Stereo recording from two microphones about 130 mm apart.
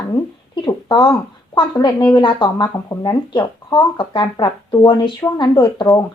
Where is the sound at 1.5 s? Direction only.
30° left (ahead or behind).